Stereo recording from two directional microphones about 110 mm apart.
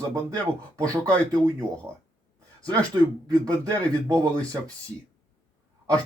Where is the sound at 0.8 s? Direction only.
30° right (ahead or behind).